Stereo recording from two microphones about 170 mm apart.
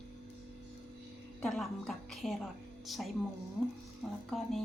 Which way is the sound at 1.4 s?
Centre (ahead or behind).